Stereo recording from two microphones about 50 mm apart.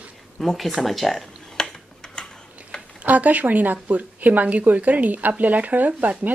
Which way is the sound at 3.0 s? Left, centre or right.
Right.